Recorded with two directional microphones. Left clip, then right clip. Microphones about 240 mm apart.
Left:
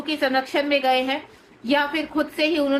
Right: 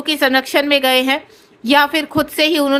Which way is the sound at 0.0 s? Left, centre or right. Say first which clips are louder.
Right 7 dB; right.